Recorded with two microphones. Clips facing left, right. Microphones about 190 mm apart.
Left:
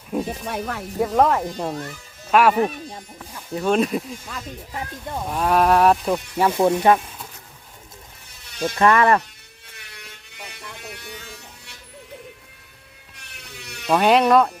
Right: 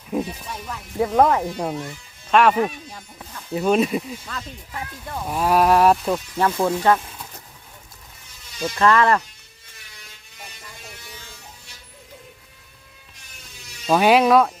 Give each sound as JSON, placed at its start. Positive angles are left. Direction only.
{"t": 0.4, "sound": "speech", "side_deg": 70}
{"t": 0.9, "sound": "speech", "side_deg": -5}
{"t": 2.3, "sound": "speech", "side_deg": 5}
{"t": 3.5, "sound": "speech", "side_deg": -5}
{"t": 4.3, "sound": "speech", "side_deg": 15}
{"t": 5.3, "sound": "speech", "side_deg": -5}
{"t": 6.3, "sound": "speech", "side_deg": 15}
{"t": 8.8, "sound": "speech", "side_deg": 15}
{"t": 9.6, "sound": "electric shaver", "side_deg": 65}
{"t": 13.1, "sound": "a sound", "side_deg": 65}
{"t": 13.9, "sound": "speech", "side_deg": -5}